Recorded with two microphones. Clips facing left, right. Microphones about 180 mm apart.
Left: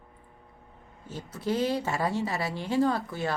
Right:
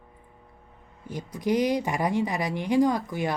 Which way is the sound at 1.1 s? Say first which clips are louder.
Right 4 dB; 15° right (ahead or behind).